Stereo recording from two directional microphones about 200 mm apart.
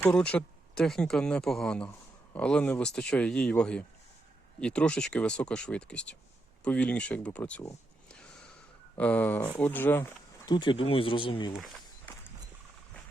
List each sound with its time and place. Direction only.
0.0 s speech: 5° left (ahead or behind)
9.0 s speech: 5° left (ahead or behind); by 11.5 s 25° left (ahead or behind)
11.6 s walk: centre (ahead or behind)